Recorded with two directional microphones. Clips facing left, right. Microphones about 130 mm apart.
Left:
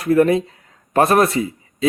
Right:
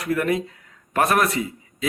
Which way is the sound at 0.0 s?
30° left (ahead or behind).